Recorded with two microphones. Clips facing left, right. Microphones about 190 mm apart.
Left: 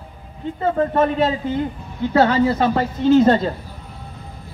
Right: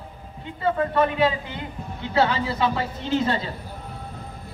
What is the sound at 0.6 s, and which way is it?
Speech, 45° left (ahead or behind).